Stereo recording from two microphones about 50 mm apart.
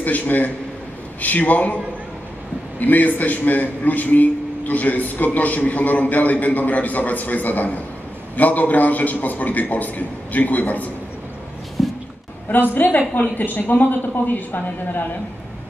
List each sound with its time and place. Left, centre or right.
0.0 s a man's voice: left
2.8 s a man's voice: left
11.8 s a sound: centre
12.7 s a man's voice: left